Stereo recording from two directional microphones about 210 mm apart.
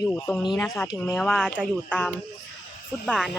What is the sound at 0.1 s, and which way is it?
Speech, 5° left (ahead or behind).